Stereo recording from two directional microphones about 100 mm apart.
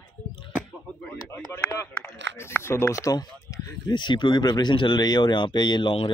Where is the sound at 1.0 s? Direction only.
20° left (ahead or behind).